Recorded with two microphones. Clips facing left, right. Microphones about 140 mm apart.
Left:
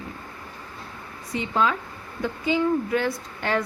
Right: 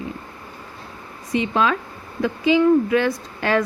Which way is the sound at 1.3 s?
90° right.